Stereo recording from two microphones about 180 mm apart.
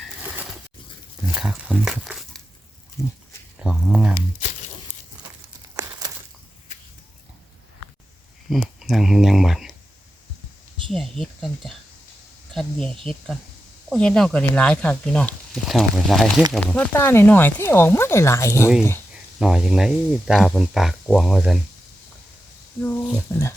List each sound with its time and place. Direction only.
1.4 s speech: 5° right (ahead or behind)
3.0 s speech: 15° left (ahead or behind)
3.6 s speech: 5° right (ahead or behind)
5.7 s crumpling: 15° right (ahead or behind)
8.4 s speech: centre (ahead or behind)
10.9 s speech: centre (ahead or behind)
13.9 s speech: 5° left (ahead or behind)
19.4 s speech: centre (ahead or behind)
22.8 s speech: 15° left (ahead or behind)